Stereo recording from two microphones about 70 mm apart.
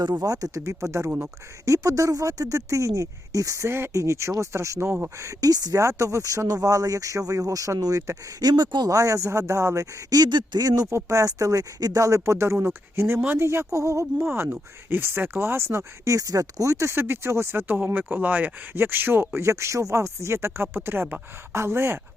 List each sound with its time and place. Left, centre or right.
0.1 s speech: right
4.9 s speech: right
5.2 s speech: right
5.8 s speech: right
8.4 s speech: right
9.0 s speech: right
10.1 s speech: right
10.8 s speech: right
12.5 s speech: right
14.3 s speech: right